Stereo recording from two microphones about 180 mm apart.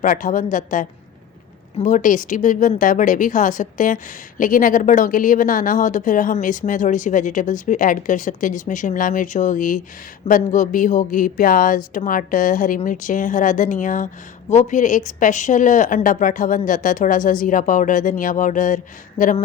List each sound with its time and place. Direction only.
0.0 s speech: 50° left (ahead or behind)